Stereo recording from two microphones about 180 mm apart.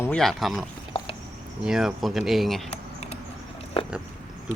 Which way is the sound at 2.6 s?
35° left (ahead or behind).